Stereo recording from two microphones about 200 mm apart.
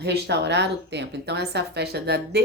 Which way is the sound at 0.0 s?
55° right (ahead or behind).